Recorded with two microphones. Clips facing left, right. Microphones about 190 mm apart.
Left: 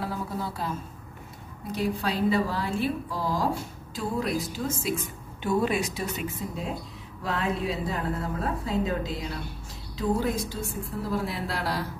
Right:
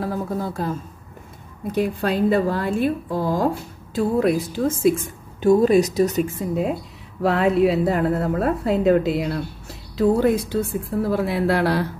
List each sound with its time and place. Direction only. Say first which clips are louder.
0.0 s speech: right 7 dB; 50° right (ahead or behind)
1.8 s a woman's voice: right 7 dB; 55° right (ahead or behind)
7.2 s a woman's voice: right 11 dB; 65° right (ahead or behind)